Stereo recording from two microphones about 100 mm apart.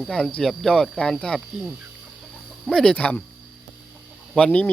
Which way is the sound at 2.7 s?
10° left (ahead or behind).